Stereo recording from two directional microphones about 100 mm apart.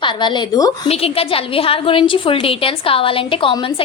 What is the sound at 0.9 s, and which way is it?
A woman's voice, 75° left (ahead or behind).